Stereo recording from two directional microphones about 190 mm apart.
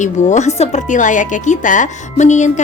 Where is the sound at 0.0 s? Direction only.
40° left (ahead or behind).